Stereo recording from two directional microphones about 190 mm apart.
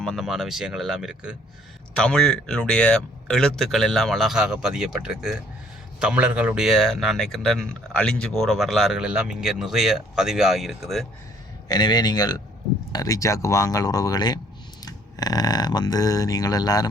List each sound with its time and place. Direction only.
0.0 s speech: centre (ahead or behind)
11.7 s speech: 20° left (ahead or behind)